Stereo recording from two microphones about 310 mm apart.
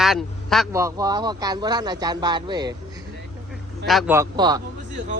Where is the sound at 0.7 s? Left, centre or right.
Centre.